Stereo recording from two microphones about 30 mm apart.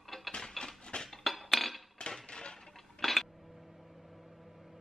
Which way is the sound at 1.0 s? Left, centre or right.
Centre.